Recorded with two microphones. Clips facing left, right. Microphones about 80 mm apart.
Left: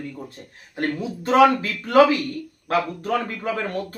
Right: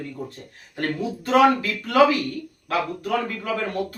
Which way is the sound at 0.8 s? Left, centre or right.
Left.